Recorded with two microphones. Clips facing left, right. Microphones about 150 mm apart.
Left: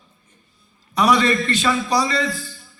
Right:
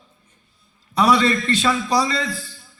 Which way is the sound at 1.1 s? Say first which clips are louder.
Even; 30° right (ahead or behind).